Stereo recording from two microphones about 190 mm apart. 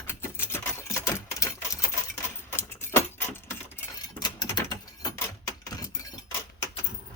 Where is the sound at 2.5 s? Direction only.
15° left (ahead or behind).